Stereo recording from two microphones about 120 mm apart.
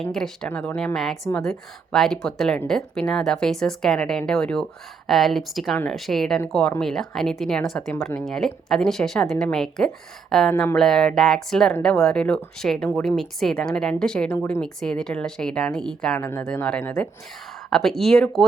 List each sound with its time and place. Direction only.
0.0 s speech: 5° left (ahead or behind)
10.5 s speech: 20° left (ahead or behind)
10.8 s speech: 5° left (ahead or behind)